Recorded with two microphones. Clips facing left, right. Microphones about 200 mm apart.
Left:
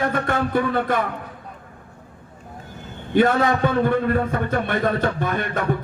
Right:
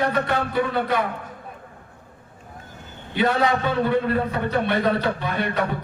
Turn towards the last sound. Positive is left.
turn(degrees=50)  # may be behind; listen again after turning